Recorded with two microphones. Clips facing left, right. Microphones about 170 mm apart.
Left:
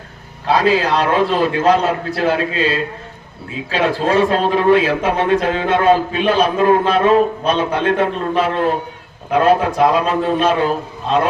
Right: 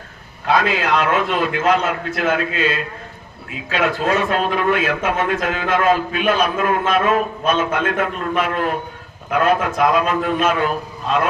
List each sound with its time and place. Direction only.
0.4 s a man's voice: 35° left (ahead or behind)